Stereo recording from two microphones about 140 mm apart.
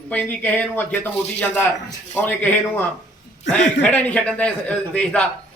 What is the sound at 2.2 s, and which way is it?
Speech, 10° left (ahead or behind).